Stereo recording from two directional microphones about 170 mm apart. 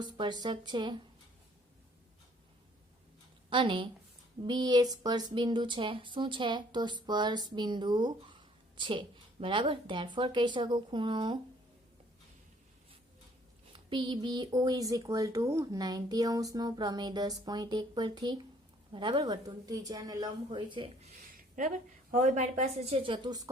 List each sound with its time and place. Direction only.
0.0 s speech: 25° right (ahead or behind)
3.5 s speech: 30° right (ahead or behind)
13.7 s speech: 30° right (ahead or behind)
21.3 s a sound: 50° right (ahead or behind)
22.1 s speech: 45° right (ahead or behind); by 23.4 s 25° right (ahead or behind)